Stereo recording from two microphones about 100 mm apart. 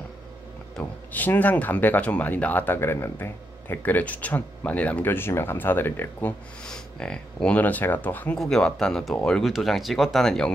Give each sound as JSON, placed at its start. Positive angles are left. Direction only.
{"t": 1.1, "sound": "speech", "side_deg": 15}
{"t": 6.6, "sound": "speech", "side_deg": 10}
{"t": 8.4, "sound": "speech", "side_deg": 5}